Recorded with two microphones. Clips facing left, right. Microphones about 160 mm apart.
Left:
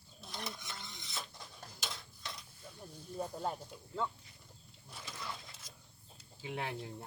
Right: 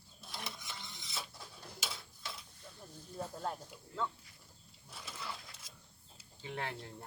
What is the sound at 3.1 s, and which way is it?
Snake, 15° left (ahead or behind).